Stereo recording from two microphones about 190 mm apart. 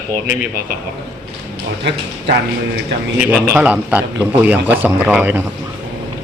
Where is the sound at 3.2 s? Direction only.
10° right (ahead or behind).